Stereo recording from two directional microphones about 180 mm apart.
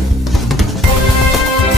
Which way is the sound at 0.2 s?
Centre (ahead or behind).